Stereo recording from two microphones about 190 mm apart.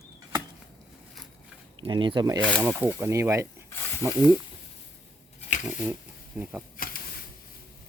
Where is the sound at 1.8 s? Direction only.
25° right (ahead or behind).